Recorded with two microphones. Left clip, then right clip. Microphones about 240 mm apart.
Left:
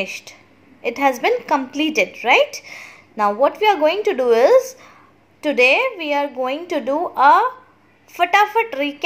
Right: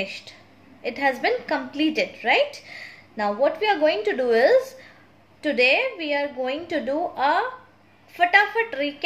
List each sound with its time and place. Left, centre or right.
0.0 s a woman's voice: left